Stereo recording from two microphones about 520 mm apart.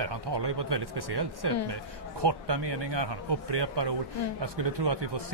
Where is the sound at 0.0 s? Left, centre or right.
Right.